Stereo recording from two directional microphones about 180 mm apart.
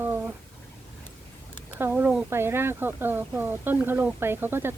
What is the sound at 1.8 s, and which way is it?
Speech, 10° right (ahead or behind).